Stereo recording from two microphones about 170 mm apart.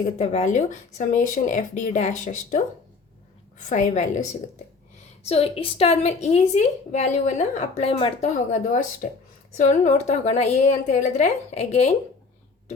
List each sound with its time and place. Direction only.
0.0 s speech: 40° left (ahead or behind)
3.6 s a woman's voice: 45° left (ahead or behind)